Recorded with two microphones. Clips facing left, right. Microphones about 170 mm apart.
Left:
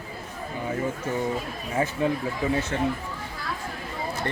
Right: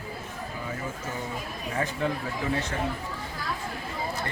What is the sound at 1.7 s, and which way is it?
Speech, 20° left (ahead or behind).